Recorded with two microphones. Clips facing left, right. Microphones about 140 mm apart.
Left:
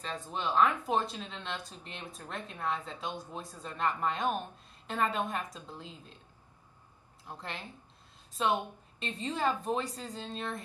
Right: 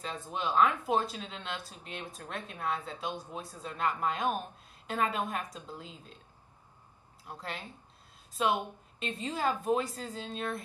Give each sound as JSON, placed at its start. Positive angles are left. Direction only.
{"t": 0.0, "sound": "speech", "side_deg": -5}
{"t": 7.2, "sound": "speech", "side_deg": -5}